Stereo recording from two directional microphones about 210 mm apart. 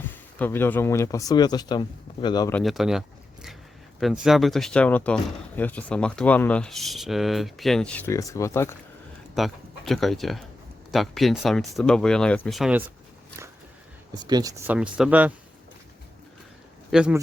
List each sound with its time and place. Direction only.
0.3 s speech: 10° left (ahead or behind)
2.5 s speech: 5° left (ahead or behind)
4.0 s speech: centre (ahead or behind); by 8.7 s 15° left (ahead or behind)
9.3 s speech: centre (ahead or behind)
14.1 s speech: 20° right (ahead or behind)
14.8 s speech: 5° right (ahead or behind)
16.9 s speech: 5° right (ahead or behind)